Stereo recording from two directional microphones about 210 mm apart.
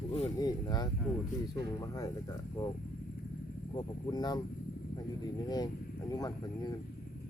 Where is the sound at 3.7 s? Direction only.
20° left (ahead or behind).